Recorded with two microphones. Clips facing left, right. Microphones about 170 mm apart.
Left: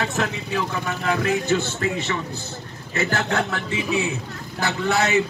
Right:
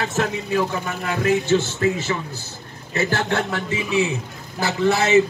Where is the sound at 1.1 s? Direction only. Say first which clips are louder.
Right 4 dB; 35° right (ahead or behind).